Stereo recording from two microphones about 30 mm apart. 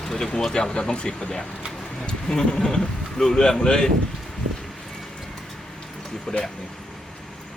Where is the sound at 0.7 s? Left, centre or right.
Left.